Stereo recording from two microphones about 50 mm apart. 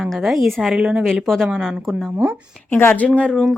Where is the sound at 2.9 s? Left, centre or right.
Left.